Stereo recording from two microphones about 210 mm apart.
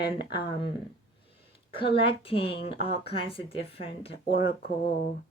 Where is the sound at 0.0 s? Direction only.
25° left (ahead or behind).